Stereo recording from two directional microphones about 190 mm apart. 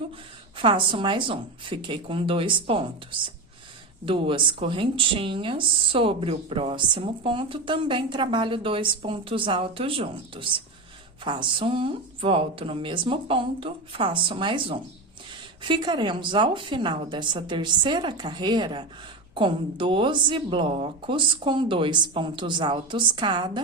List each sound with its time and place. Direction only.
0.5 s speech: 25° right (ahead or behind)